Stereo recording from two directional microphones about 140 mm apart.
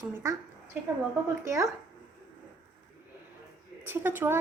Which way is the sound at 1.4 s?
20° right (ahead or behind).